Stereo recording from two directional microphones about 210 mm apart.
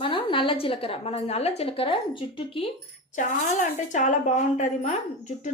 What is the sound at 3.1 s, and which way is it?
Speech, 35° left (ahead or behind).